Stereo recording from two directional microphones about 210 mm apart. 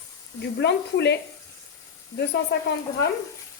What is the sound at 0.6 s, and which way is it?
Speech, 55° left (ahead or behind).